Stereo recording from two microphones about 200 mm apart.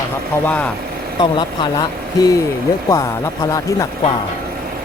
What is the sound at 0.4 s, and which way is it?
Speech, 10° left (ahead or behind).